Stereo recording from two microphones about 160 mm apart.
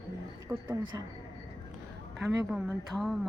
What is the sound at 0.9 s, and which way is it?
Speech, 20° right (ahead or behind).